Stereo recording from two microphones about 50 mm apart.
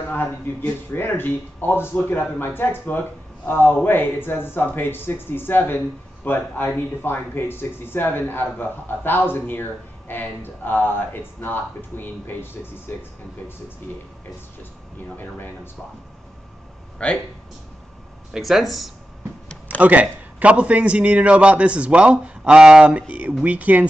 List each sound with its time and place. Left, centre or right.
0.1 s speech: left
12.0 s speech: left
15.1 s speech: left
17.0 s speech: left
18.3 s speech: centre
19.8 s a man's voice: right